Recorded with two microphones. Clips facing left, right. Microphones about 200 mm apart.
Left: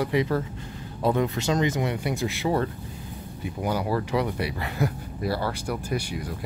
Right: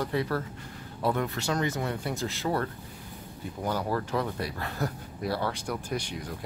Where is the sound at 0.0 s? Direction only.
15° left (ahead or behind).